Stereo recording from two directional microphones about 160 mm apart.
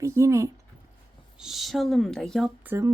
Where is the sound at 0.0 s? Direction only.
20° right (ahead or behind).